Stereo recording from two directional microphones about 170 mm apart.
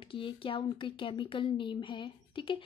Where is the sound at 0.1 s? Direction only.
30° left (ahead or behind).